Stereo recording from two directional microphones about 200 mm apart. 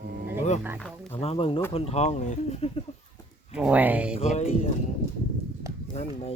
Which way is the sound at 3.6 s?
5° right (ahead or behind).